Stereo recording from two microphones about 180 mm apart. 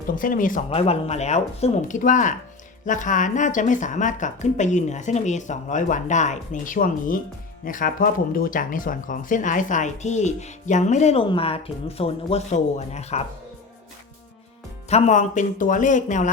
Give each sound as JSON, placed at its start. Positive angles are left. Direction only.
{"t": 0.2, "sound": "speech", "side_deg": 50}
{"t": 0.7, "sound": "speech", "side_deg": 35}
{"t": 14.8, "sound": "speech", "side_deg": 35}